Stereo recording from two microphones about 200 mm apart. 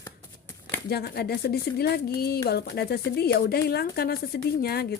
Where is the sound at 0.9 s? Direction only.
50° left (ahead or behind).